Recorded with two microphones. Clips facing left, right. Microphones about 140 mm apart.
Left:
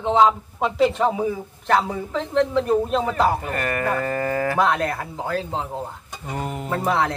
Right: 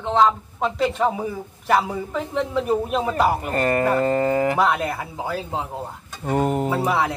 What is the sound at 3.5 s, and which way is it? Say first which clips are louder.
Speech: right 4 dB; 30° right (ahead or behind).